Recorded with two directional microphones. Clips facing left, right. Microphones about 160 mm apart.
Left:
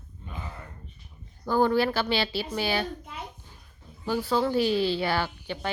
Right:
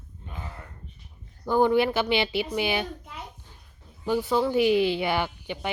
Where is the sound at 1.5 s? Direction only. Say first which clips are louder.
Right 2 dB; 20° right (ahead or behind).